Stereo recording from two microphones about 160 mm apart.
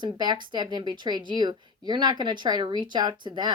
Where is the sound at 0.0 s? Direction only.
25° right (ahead or behind).